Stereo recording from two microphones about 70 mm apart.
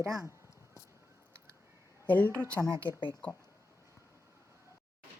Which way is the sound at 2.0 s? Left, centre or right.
Left.